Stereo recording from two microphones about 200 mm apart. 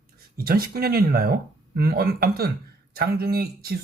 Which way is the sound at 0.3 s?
50° right (ahead or behind).